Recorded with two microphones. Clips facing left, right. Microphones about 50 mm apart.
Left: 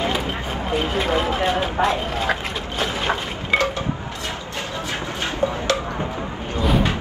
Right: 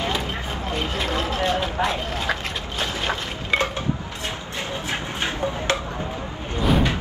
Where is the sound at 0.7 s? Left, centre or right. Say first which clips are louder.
Left 5 dB; centre.